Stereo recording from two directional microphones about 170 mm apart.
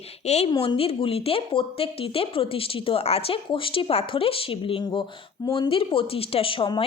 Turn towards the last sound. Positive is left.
turn(degrees=30)  # may be behind; listen again after turning